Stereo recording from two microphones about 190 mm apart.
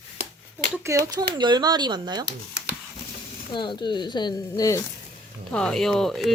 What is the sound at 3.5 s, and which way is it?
Speech, 25° left (ahead or behind).